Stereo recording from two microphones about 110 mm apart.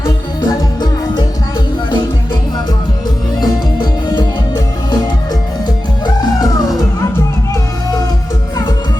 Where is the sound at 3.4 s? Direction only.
40° left (ahead or behind).